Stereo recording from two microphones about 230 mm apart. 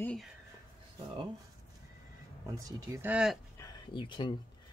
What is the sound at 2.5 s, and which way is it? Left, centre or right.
Speech, centre.